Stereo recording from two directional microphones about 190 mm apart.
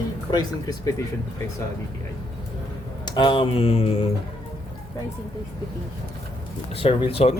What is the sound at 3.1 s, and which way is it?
Speech, 25° left (ahead or behind).